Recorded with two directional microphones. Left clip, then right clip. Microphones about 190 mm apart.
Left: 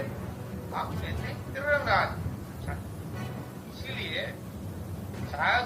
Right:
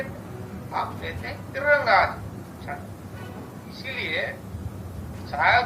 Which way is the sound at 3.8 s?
50° right (ahead or behind).